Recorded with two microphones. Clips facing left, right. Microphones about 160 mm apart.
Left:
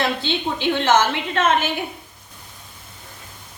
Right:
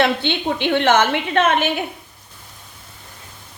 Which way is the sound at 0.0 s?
65° right (ahead or behind).